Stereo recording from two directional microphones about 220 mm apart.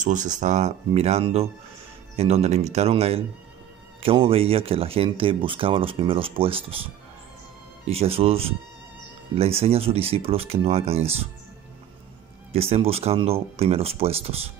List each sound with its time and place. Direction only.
0.0 s speech: 35° right (ahead or behind)
7.9 s speech: 25° right (ahead or behind)
12.5 s speech: 25° right (ahead or behind)